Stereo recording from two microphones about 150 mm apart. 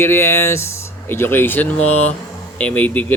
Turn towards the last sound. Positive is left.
turn(degrees=10)  # may be behind; listen again after turning